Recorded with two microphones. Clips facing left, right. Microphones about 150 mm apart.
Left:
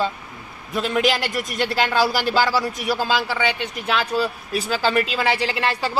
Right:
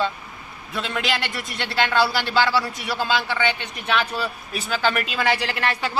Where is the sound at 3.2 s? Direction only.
5° left (ahead or behind).